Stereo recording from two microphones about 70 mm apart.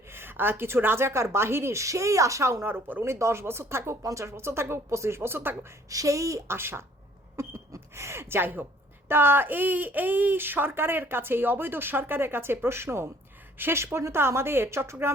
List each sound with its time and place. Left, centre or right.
0.1 s speech: right
5.9 s a woman's voice: right
6.6 s speech: right